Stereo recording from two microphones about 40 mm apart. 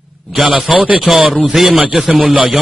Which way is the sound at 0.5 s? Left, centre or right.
Right.